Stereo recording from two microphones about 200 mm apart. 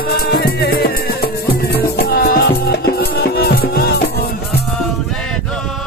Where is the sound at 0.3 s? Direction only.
55° left (ahead or behind).